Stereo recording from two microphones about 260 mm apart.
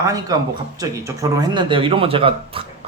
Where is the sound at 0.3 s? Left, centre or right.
Centre.